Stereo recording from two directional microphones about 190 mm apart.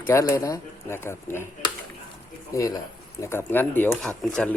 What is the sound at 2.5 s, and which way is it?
Speech, 15° left (ahead or behind).